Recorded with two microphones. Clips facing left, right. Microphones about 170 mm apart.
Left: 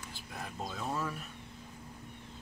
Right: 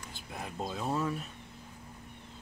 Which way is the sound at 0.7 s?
20° right (ahead or behind).